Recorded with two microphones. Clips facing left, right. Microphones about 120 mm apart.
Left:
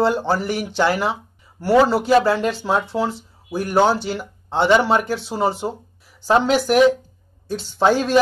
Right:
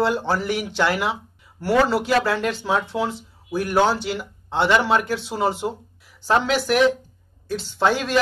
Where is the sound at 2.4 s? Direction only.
5° left (ahead or behind).